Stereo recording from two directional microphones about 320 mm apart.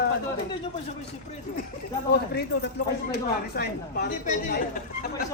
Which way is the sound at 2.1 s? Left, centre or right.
Left.